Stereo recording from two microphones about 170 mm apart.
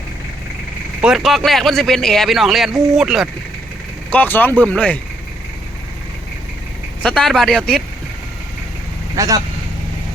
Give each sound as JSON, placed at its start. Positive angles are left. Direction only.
{"t": 1.0, "sound": "speech", "side_deg": 0}
{"t": 4.1, "sound": "speech", "side_deg": 10}
{"t": 7.0, "sound": "speech", "side_deg": 5}
{"t": 9.1, "sound": "speech", "side_deg": -20}